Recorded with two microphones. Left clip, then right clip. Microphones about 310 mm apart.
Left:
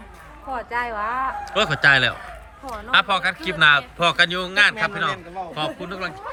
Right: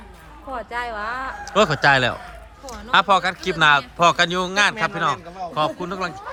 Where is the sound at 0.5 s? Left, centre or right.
Left.